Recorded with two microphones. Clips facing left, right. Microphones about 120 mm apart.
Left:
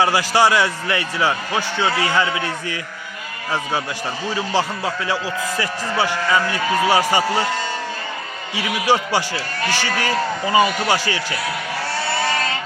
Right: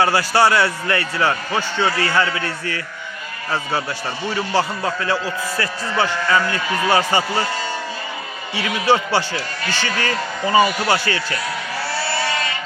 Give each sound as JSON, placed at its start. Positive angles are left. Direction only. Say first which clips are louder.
{"t": 0.0, "sound": "a man's voice", "louder": "even", "side_deg": 15}
{"t": 8.5, "sound": "a man's voice", "louder": "right 1 dB", "side_deg": 10}